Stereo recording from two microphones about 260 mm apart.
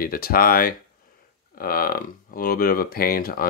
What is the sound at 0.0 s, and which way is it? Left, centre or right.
Speech, left.